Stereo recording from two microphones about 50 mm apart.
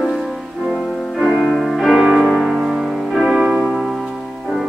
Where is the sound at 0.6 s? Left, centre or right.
Centre.